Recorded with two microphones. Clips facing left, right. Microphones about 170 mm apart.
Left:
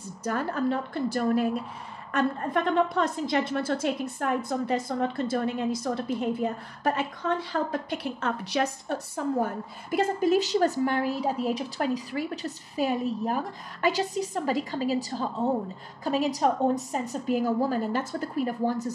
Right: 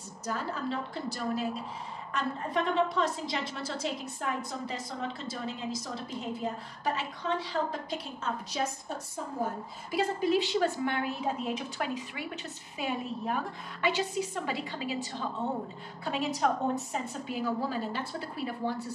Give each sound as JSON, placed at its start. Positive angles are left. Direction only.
{"t": 0.2, "sound": "a woman's voice", "side_deg": 55}
{"t": 7.9, "sound": "a woman's voice", "side_deg": 65}